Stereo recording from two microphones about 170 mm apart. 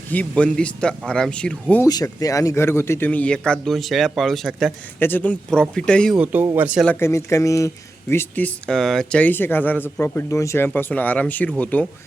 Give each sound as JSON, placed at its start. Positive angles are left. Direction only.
{"t": 0.1, "sound": "a man's voice", "side_deg": 5}
{"t": 1.9, "sound": "a man's voice", "side_deg": 20}
{"t": 4.9, "sound": "speech", "side_deg": 10}
{"t": 6.1, "sound": "speech", "side_deg": -10}
{"t": 6.8, "sound": "a man's voice", "side_deg": 15}